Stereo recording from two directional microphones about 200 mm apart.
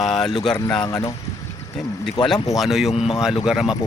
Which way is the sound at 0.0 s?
Centre (ahead or behind).